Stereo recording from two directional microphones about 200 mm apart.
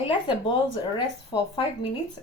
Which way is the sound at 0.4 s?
25° left (ahead or behind).